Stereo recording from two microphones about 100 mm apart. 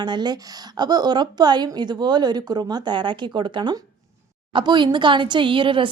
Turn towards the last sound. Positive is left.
turn(degrees=-55)  # may be behind; listen again after turning